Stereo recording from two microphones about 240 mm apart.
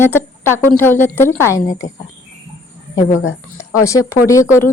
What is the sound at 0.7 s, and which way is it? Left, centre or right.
A woman's voice, centre.